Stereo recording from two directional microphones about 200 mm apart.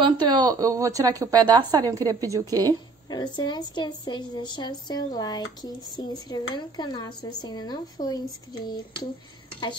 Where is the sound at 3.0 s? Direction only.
20° left (ahead or behind).